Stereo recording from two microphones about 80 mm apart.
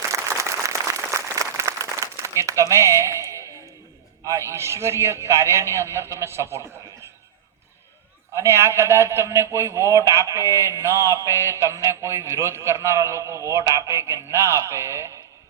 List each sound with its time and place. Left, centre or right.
0.1 s applause: right
4.3 s speech: right
8.3 s speech: right